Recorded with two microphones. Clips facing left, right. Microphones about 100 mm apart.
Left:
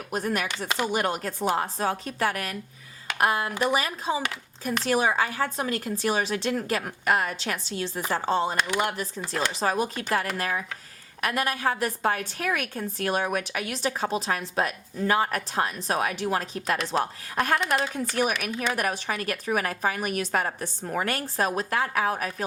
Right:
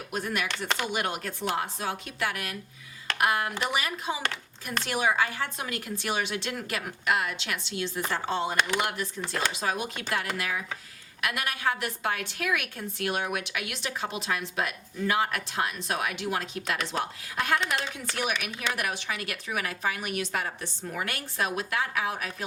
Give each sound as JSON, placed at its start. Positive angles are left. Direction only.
{"t": 0.1, "sound": "a woman's voice", "side_deg": 40}